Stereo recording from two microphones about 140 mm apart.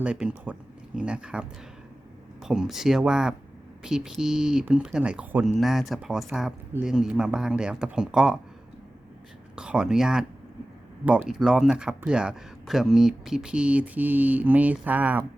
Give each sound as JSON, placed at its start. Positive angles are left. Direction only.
{"t": 0.0, "sound": "speech", "side_deg": -10}
{"t": 9.6, "sound": "speech", "side_deg": -5}